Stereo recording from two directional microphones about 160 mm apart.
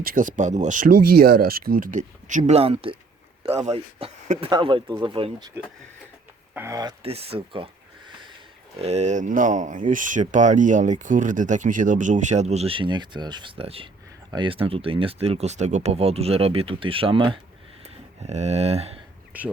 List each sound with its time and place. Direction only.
0.0 s speech: 60° right (ahead or behind)
2.6 s speech: 35° right (ahead or behind)
6.5 s speech: 15° right (ahead or behind)
7.0 s speech: 40° right (ahead or behind)
8.8 s speech: 45° right (ahead or behind)
17.8 s speech: 45° right (ahead or behind)
19.3 s speech: 10° right (ahead or behind)